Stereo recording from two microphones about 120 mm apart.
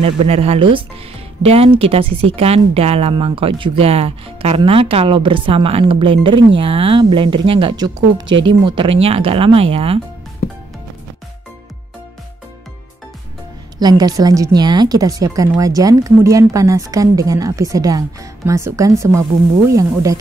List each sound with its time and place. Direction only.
0.0 s speech: 55° right (ahead or behind)
13.7 s a woman's voice: 35° right (ahead or behind)